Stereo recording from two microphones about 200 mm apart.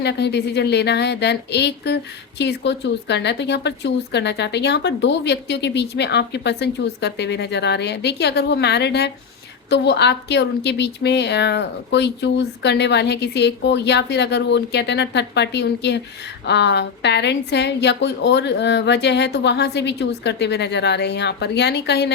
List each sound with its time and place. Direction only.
0.0 s speech: 60° left (ahead or behind)